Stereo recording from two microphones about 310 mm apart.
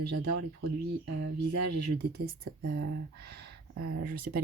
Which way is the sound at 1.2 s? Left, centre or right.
Right.